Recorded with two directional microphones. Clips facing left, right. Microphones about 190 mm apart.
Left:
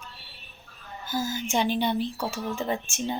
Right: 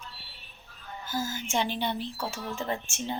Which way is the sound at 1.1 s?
15° left (ahead or behind).